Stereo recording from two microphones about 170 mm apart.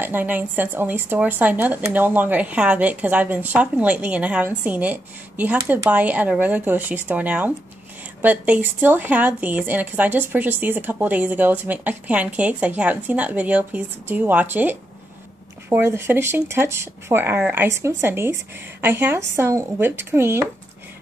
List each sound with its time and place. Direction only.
0.0 s a woman's voice: 10° right (ahead or behind)
5.6 s speech: 20° right (ahead or behind)
5.9 s a woman's voice: 10° right (ahead or behind)